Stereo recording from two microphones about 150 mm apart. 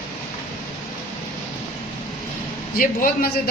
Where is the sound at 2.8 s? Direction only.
65° left (ahead or behind).